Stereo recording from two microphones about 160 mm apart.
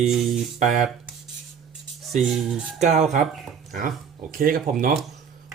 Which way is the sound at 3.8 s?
60° right (ahead or behind).